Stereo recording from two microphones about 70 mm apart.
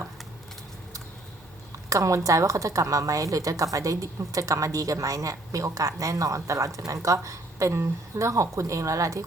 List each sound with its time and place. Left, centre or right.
1.9 s a woman's voice: right